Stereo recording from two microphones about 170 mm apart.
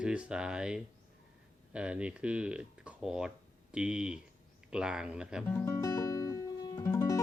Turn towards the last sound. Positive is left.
turn(degrees=20)  # may be behind; listen again after turning